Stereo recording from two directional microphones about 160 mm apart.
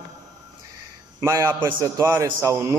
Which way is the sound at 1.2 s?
20° right (ahead or behind).